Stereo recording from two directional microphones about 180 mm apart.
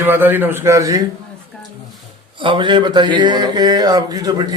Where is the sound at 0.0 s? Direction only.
10° right (ahead or behind).